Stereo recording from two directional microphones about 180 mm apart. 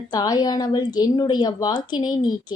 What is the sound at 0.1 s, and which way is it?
Speech, 20° left (ahead or behind).